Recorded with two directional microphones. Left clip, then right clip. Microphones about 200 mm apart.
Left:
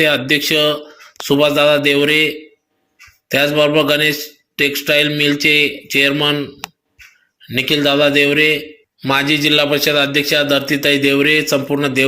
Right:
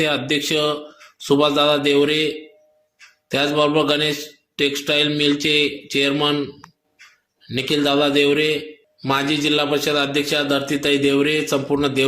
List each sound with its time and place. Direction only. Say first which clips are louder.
0.0 s a man's voice: left 6 dB; 5° left (ahead or behind)